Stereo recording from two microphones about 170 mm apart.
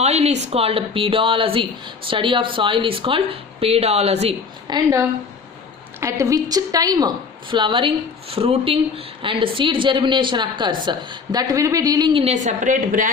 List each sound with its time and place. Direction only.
0.0 s a sound: 40° right (ahead or behind)
0.4 s speech: 35° right (ahead or behind)
4.7 s speech: 20° right (ahead or behind); by 13.1 s 50° right (ahead or behind)